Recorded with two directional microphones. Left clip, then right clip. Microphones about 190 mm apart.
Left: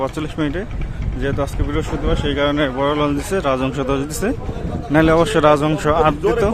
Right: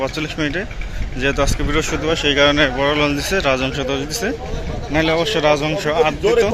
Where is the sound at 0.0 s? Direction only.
20° left (ahead or behind).